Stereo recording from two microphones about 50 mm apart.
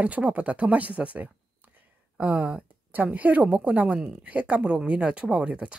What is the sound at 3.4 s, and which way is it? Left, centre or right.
Speech, right.